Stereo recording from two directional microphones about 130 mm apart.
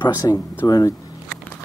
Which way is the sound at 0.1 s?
25° left (ahead or behind).